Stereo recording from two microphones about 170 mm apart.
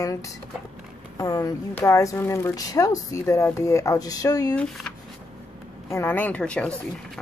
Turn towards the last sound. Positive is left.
turn(degrees=5)  # may be behind; listen again after turning